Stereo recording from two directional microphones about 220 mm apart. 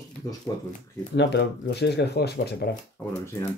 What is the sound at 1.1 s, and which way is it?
Speech, 50° left (ahead or behind).